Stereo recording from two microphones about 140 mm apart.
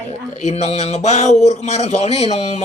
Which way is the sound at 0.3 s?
55° left (ahead or behind).